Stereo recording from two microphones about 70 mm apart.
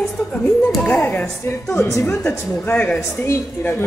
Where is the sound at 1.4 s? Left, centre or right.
Left.